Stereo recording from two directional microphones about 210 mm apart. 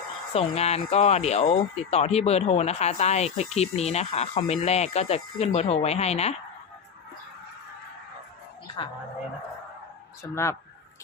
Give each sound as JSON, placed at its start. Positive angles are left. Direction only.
{"t": 0.3, "sound": "speech", "side_deg": 30}
{"t": 8.6, "sound": "a sound", "side_deg": 25}
{"t": 10.2, "sound": "speech", "side_deg": 10}